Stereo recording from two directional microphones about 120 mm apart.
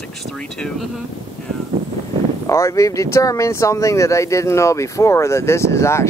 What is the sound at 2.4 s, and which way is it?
Speech, 25° left (ahead or behind).